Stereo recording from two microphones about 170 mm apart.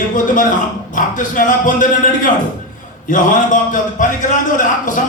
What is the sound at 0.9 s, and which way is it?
A man's voice, 50° left (ahead or behind).